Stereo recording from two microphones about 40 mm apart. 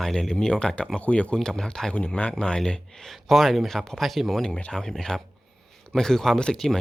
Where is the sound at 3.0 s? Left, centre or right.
Centre.